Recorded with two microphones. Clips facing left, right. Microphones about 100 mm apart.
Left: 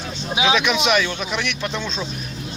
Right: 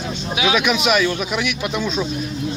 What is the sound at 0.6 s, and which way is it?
Speech, 5° right (ahead or behind).